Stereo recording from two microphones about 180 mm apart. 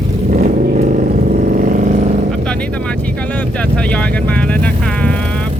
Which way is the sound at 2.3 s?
5° left (ahead or behind).